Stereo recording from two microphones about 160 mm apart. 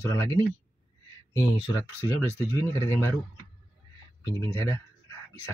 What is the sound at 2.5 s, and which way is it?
Speech, 15° left (ahead or behind).